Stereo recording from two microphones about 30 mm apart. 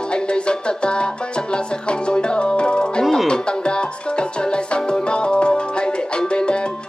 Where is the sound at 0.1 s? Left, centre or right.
Left.